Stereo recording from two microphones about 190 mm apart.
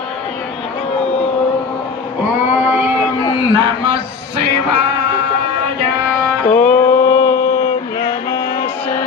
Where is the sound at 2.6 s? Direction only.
10° right (ahead or behind).